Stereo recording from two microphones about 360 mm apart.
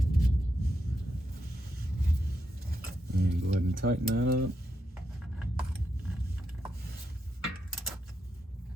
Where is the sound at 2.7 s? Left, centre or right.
Right.